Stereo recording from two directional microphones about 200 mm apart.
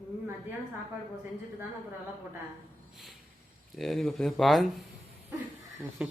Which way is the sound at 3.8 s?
Centre (ahead or behind).